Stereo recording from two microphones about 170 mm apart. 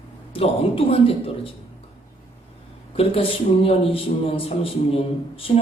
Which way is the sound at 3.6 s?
35° left (ahead or behind).